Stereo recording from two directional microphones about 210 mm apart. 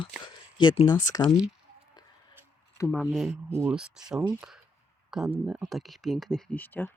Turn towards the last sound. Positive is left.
turn(degrees=10)  # may be behind; listen again after turning